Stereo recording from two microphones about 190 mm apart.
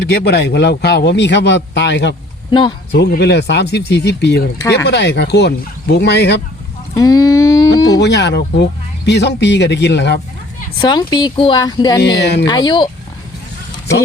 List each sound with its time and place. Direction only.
0.0 s a man's voice: 60° left (ahead or behind)
2.5 s speech: 25° left (ahead or behind)
2.9 s a man's voice: 60° left (ahead or behind)
6.9 s a sound: 20° left (ahead or behind)
7.9 s a man's voice: 65° left (ahead or behind)
10.8 s speech: 20° left (ahead or behind)
11.9 s a man's voice: 65° left (ahead or behind)
12.5 s speech: 25° left (ahead or behind)